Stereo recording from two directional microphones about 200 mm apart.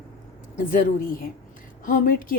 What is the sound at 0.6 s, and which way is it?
A woman's voice, 40° left (ahead or behind).